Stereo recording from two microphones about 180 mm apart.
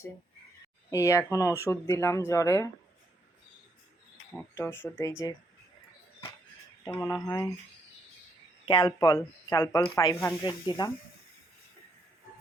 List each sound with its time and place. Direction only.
0.9 s speech: 15° left (ahead or behind)
4.4 s speech: 10° left (ahead or behind)
6.8 s speech: 20° left (ahead or behind)
8.6 s speech: 25° left (ahead or behind)